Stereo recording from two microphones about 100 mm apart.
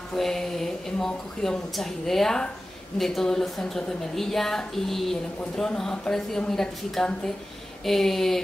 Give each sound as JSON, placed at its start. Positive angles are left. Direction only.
{"t": 0.1, "sound": "speech", "side_deg": 5}